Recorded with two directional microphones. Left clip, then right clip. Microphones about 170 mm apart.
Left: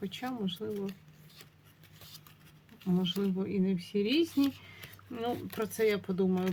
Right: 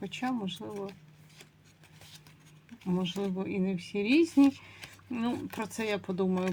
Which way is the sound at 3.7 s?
30° right (ahead or behind).